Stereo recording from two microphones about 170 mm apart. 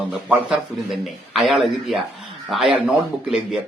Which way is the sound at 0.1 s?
5° right (ahead or behind).